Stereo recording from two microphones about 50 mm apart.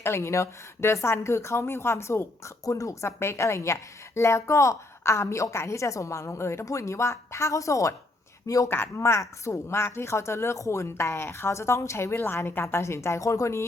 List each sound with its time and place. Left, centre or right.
0.0 s speech: left
8.7 s a woman's voice: left
12.6 s speech: left